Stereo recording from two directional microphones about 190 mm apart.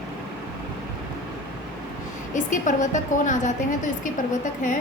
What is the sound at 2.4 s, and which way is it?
A woman's voice, 40° left (ahead or behind).